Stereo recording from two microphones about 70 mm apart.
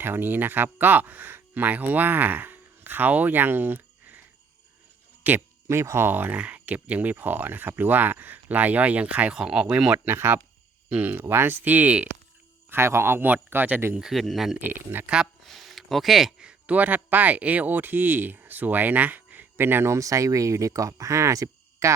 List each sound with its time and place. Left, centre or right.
0.0 s speech: right
5.2 s speech: right
5.6 s speech: right; by 10.0 s centre
10.1 s speech: right
10.8 s speech: right
12.7 s speech: right
14.1 s speech: centre
14.9 s speech: right
15.4 s a sound: centre
16.4 s speech: centre; by 21.9 s right